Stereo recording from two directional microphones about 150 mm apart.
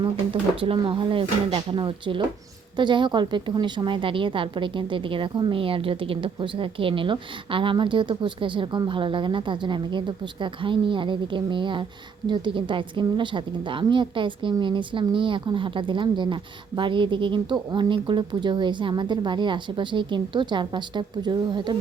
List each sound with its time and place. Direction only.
0.6 s a woman's voice: 35° right (ahead or behind)